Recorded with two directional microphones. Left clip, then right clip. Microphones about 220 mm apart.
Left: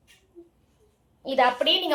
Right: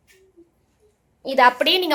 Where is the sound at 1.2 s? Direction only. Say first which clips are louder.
Right 6 dB; 50° right (ahead or behind).